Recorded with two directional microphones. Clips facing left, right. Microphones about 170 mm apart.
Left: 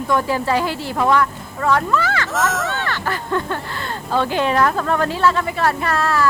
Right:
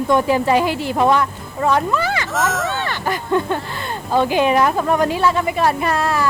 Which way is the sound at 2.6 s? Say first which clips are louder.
Right 2 dB; 15° right (ahead or behind).